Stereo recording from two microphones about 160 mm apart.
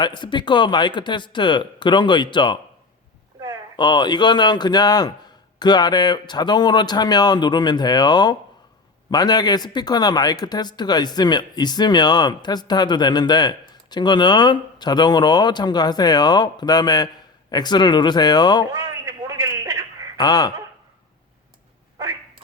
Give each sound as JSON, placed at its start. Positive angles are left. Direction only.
{"t": 0.0, "sound": "speech", "side_deg": 30}
{"t": 3.8, "sound": "speech", "side_deg": 30}
{"t": 18.7, "sound": "a sound", "side_deg": -20}
{"t": 20.1, "sound": "speech", "side_deg": 25}